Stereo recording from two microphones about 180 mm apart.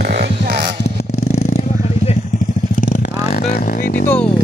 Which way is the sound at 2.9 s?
50° left (ahead or behind).